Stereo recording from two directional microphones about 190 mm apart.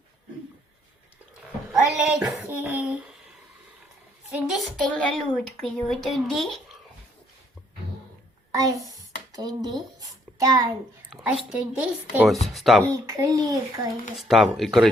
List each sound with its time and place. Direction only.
1.7 s child singing: 5° right (ahead or behind)
4.4 s speech: centre (ahead or behind)
8.5 s a child's voice: 20° right (ahead or behind)
11.1 s a sound: 5° right (ahead or behind)
11.4 s a woman's voice: 5° right (ahead or behind)
12.9 s a child's voice: 20° right (ahead or behind)
14.2 s speech: centre (ahead or behind)